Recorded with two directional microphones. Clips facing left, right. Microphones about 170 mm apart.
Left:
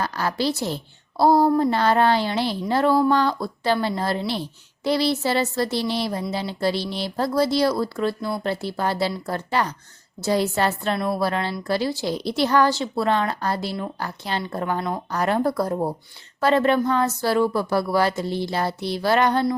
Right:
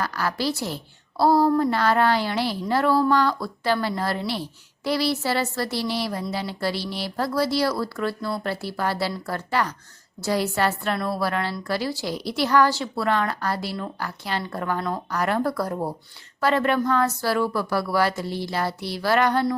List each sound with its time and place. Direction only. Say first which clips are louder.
0.0 s speech: left 2 dB; 25° left (ahead or behind)
15.1 s speech: left 3 dB; 25° left (ahead or behind)